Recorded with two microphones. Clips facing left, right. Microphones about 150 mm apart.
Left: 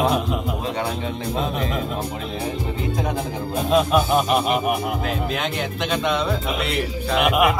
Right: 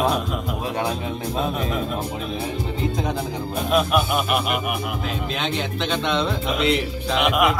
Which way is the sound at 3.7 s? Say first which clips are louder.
Left 3 dB; 30° left (ahead or behind).